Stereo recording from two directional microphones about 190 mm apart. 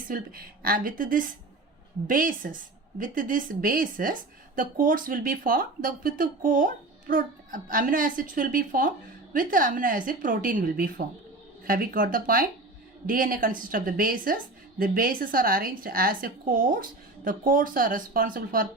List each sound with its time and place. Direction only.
0.1 s a woman's voice: 50° right (ahead or behind)